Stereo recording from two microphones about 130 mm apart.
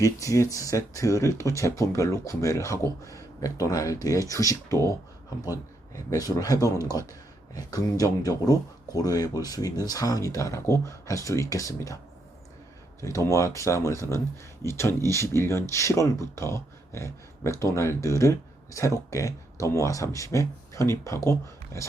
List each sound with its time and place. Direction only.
0.0 s speech: 25° left (ahead or behind)
13.0 s speech: 25° left (ahead or behind)